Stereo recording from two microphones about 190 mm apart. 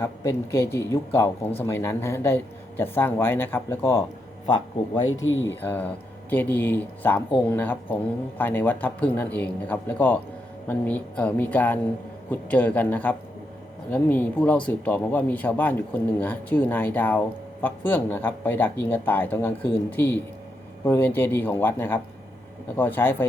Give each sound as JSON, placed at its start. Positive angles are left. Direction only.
{"t": 0.0, "sound": "speech", "side_deg": 15}
{"t": 5.2, "sound": "speech", "side_deg": 90}
{"t": 5.5, "sound": "speech", "side_deg": 10}